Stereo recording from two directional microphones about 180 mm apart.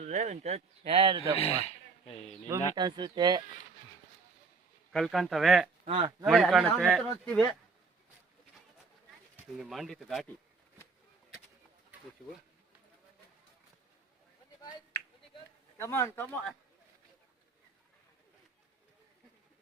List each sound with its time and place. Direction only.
0.0 s speech: 40° right (ahead or behind)
1.4 s speech: 35° left (ahead or behind)
2.5 s speech: 25° right (ahead or behind)
4.9 s speech: centre (ahead or behind)
5.8 s speech: 30° right (ahead or behind)
6.2 s speech: centre (ahead or behind)
9.3 s speech: centre (ahead or behind)
15.8 s speech: 15° left (ahead or behind)